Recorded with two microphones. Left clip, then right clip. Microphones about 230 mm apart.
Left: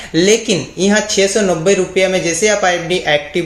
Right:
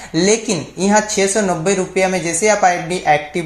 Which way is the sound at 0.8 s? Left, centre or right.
Centre.